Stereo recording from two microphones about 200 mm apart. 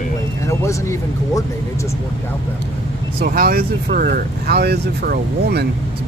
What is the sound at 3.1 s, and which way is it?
Speech, 50° right (ahead or behind).